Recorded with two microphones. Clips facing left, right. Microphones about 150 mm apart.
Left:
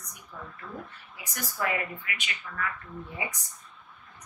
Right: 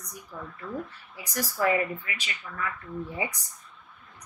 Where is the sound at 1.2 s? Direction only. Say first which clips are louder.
Right 5 dB; 35° right (ahead or behind).